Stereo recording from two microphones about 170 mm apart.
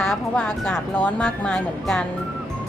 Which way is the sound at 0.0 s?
5° left (ahead or behind).